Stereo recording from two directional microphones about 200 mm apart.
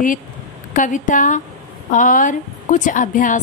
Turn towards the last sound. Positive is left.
turn(degrees=40)  # may be behind; listen again after turning